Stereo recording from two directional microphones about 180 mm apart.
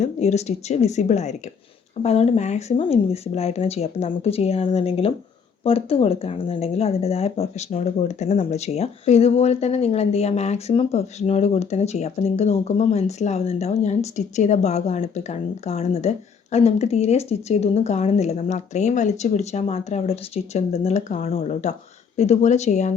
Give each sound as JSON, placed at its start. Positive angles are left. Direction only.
{"t": 0.0, "sound": "speech", "side_deg": 40}